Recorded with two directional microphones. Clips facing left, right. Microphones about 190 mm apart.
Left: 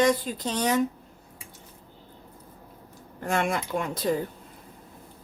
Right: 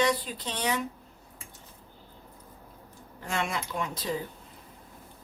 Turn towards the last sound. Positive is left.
turn(degrees=50)  # may be behind; listen again after turning